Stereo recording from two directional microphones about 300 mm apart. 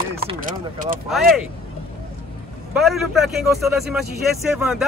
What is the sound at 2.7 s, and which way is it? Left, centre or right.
Speech, centre.